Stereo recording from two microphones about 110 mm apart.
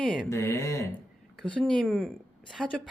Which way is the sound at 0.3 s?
25° left (ahead or behind).